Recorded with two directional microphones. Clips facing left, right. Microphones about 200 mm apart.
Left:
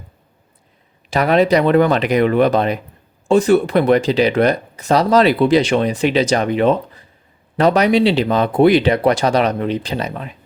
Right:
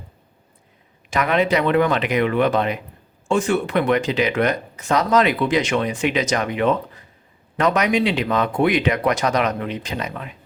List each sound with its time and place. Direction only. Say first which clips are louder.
1.1 s speech: left 5 dB; 35° left (ahead or behind)